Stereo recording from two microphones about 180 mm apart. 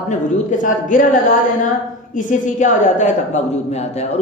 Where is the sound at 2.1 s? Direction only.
45° left (ahead or behind).